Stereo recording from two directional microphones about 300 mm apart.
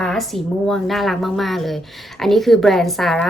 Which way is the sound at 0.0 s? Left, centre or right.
Centre.